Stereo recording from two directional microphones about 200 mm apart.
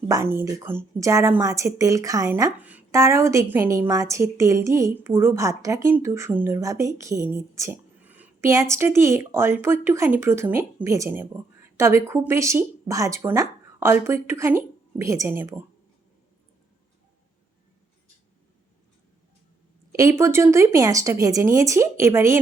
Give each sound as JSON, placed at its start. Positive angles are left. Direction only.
{"t": 0.1, "sound": "speech", "side_deg": -15}
{"t": 19.9, "sound": "speech", "side_deg": -15}